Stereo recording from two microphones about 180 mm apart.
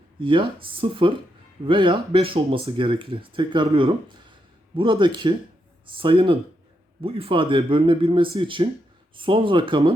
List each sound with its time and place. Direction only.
0.2 s speech: 30° right (ahead or behind)